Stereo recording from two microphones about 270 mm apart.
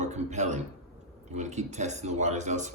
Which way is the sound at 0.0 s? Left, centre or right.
Right.